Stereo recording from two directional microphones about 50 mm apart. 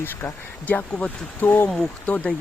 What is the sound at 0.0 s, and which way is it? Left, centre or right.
Speech, left.